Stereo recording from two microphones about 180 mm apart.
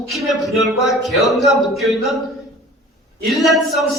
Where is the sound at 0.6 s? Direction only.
Centre (ahead or behind).